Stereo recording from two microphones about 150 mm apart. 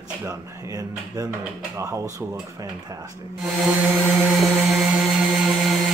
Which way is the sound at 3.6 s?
10° right (ahead or behind).